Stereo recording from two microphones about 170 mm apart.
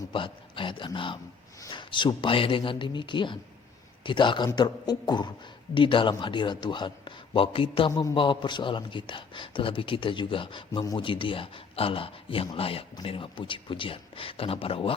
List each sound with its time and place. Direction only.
0.1 s a man's voice: 30° left (ahead or behind)